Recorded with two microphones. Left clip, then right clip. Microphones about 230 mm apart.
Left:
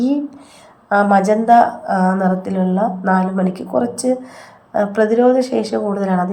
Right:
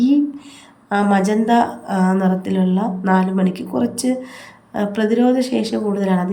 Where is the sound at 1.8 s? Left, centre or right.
Right.